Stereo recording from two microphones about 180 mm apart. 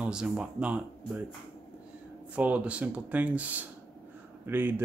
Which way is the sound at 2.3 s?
10° right (ahead or behind).